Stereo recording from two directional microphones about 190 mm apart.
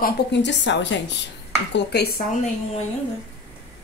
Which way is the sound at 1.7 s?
60° left (ahead or behind).